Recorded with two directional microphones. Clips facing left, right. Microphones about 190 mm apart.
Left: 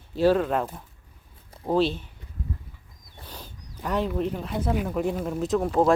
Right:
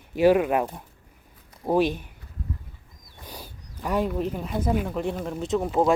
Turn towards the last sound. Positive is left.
turn(degrees=0)  # may be behind; listen again after turning